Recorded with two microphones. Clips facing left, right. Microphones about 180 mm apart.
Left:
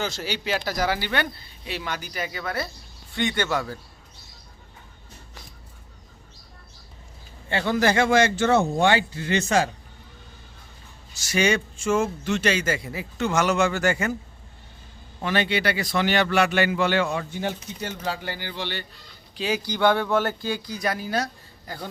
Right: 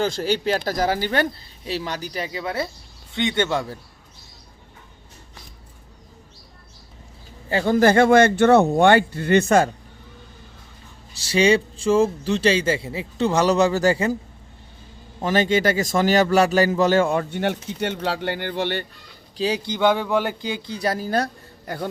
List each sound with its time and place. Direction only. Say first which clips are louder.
0.0 s a man's voice: right 7 dB; 45° right (ahead or behind); by 3.8 s 25° right (ahead or behind)
7.5 s speech: right 5 dB; 45° right (ahead or behind)
11.3 s a man's voice: right 5 dB; 30° right (ahead or behind)
15.2 s a man's voice: right 5 dB; 40° right (ahead or behind)
19.4 s a man's voice: right 2 dB; 30° right (ahead or behind)